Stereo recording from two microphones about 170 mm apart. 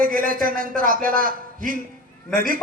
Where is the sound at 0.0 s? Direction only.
55° right (ahead or behind).